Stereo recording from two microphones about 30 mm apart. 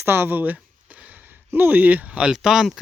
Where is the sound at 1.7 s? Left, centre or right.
Right.